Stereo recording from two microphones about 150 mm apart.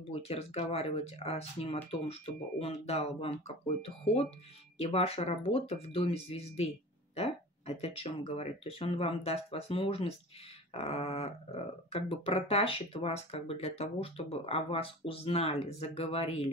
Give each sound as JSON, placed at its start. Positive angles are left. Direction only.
{"t": 0.1, "sound": "speech", "side_deg": 40}